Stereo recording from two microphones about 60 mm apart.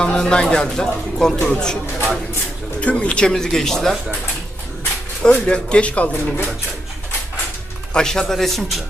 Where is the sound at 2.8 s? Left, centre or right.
Left; by 4.0 s centre.